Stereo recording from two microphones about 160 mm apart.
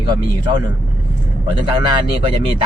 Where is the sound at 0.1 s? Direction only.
25° right (ahead or behind).